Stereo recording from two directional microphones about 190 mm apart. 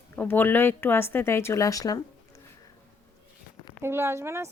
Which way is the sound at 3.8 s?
15° right (ahead or behind).